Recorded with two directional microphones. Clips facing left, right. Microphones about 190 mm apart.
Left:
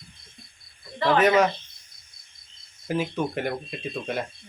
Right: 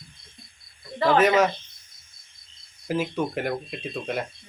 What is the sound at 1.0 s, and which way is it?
Speech, centre (ahead or behind).